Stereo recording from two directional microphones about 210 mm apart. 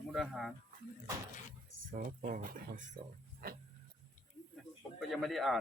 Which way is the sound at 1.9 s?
40° right (ahead or behind).